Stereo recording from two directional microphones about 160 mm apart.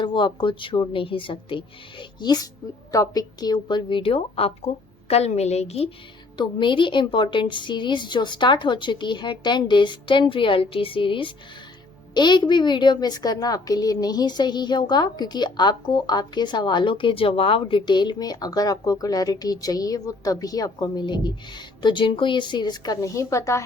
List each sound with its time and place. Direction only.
0.0 s a woman's voice: 30° left (ahead or behind)
6.3 s a woman's voice: 30° left (ahead or behind)